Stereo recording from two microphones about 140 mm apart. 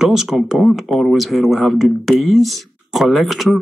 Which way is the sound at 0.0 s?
5° right (ahead or behind).